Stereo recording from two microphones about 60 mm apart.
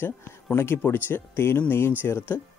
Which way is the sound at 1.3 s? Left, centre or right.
Left.